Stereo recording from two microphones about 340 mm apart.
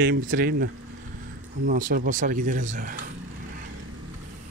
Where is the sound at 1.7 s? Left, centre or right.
Right.